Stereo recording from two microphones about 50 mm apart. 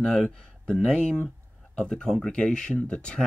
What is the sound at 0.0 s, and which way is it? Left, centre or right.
Speech, centre.